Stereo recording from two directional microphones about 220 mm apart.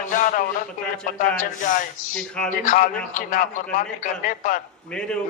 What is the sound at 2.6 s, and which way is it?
A man's voice, 35° left (ahead or behind).